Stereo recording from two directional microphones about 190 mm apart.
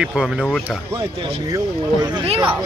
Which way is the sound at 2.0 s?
25° right (ahead or behind).